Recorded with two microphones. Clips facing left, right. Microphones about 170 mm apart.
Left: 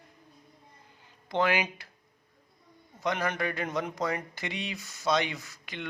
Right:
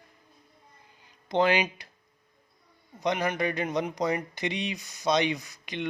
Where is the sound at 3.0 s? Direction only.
15° right (ahead or behind).